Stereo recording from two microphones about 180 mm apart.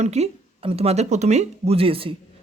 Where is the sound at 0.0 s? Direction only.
35° right (ahead or behind).